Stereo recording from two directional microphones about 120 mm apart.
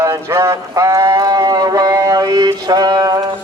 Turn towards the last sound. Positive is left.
turn(degrees=-35)  # may be behind; listen again after turning